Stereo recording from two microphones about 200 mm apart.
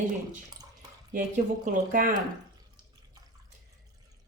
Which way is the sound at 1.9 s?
40° right (ahead or behind).